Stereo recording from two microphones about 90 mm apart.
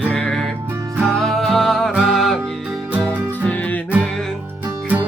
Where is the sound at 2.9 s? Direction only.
20° right (ahead or behind).